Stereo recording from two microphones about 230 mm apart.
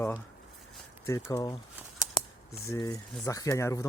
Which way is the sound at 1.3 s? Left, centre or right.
Centre.